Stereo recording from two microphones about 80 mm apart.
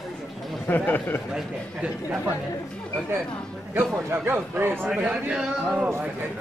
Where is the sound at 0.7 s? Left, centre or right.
Left.